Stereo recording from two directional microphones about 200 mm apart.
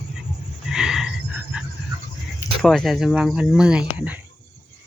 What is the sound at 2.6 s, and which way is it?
Speech, centre (ahead or behind).